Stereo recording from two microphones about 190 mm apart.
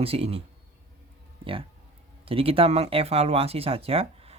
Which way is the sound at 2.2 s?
30° right (ahead or behind).